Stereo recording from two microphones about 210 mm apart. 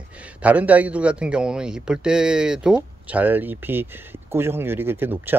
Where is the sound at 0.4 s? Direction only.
5° right (ahead or behind).